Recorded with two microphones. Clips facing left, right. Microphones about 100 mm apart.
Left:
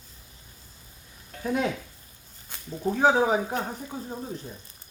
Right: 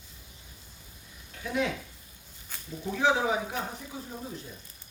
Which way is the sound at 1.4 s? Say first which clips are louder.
Left 3 dB; 40° left (ahead or behind).